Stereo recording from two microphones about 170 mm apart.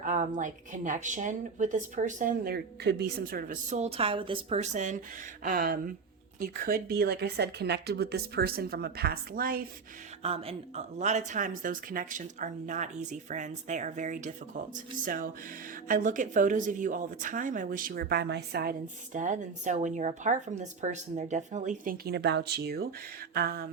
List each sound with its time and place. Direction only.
0.0 s a woman's voice: 45° right (ahead or behind)
10.2 s speech: 35° right (ahead or behind); by 18.8 s 65° right (ahead or behind)
19.1 s speech: 45° right (ahead or behind); by 23.6 s 60° right (ahead or behind)